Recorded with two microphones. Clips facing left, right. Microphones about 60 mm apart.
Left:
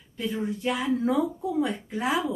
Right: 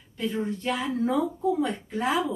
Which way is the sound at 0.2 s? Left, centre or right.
Centre.